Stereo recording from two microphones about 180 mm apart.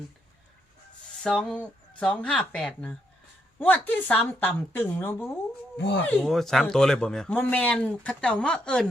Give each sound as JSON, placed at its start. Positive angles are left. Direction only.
{"t": 1.2, "sound": "a man's voice", "side_deg": 5}
{"t": 5.7, "sound": "speech", "side_deg": 75}
{"t": 6.0, "sound": "a man's voice", "side_deg": 10}